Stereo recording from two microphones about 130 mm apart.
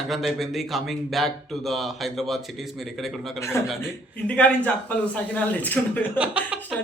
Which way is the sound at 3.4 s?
20° left (ahead or behind).